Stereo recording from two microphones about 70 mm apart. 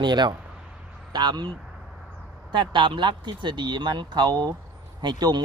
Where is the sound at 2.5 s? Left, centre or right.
Right.